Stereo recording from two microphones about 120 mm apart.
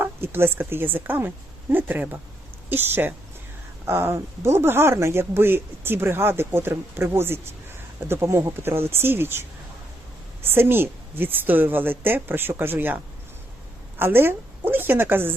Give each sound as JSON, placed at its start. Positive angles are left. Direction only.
{"t": 0.0, "sound": "a woman's voice", "side_deg": -20}
{"t": 14.0, "sound": "a woman's voice", "side_deg": -20}